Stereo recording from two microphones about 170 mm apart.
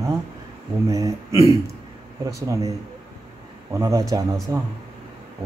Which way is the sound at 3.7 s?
20° right (ahead or behind).